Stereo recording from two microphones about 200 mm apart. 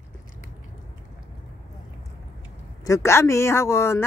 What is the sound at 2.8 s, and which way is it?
Speech, 15° left (ahead or behind).